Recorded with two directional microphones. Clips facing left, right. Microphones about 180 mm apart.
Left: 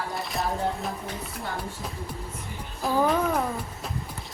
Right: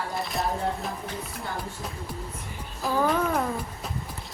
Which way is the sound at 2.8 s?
Centre (ahead or behind).